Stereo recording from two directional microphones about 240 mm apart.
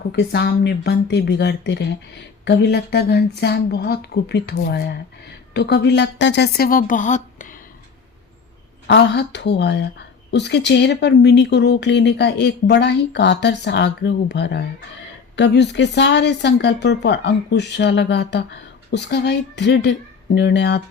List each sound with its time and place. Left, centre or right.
0.1 s a woman's voice: left
8.9 s speech: left